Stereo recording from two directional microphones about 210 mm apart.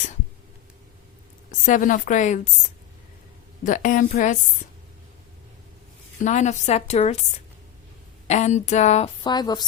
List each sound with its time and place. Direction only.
1.6 s a woman's voice: 40° left (ahead or behind)
3.6 s a woman's voice: 40° left (ahead or behind)
6.2 s a woman's voice: 35° left (ahead or behind)
8.3 s a woman's voice: 35° left (ahead or behind)
9.2 s speech: 20° left (ahead or behind)